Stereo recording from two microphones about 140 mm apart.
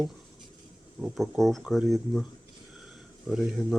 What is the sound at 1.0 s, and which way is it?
Speech, centre (ahead or behind).